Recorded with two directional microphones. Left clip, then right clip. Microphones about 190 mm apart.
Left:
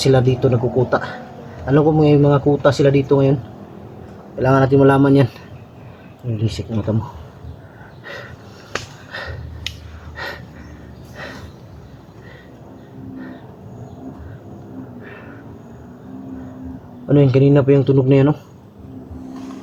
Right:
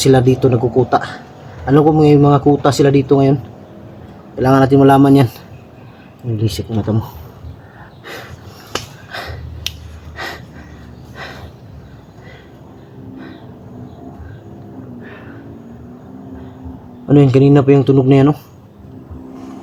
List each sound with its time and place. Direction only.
0.0 s speech: 60° right (ahead or behind)
4.4 s speech: 55° right (ahead or behind)
8.7 s sniff: 55° right (ahead or behind)
10.2 s a sound: 55° right (ahead or behind)
17.1 s speech: 60° right (ahead or behind)